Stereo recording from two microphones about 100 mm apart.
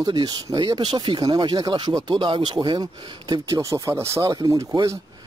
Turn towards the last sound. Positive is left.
turn(degrees=-30)  # may be behind; listen again after turning